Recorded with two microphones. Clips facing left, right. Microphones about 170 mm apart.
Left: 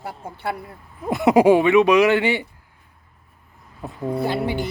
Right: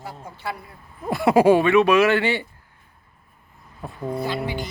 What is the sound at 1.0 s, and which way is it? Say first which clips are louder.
Speech: left 1 dB; 20° left (ahead or behind).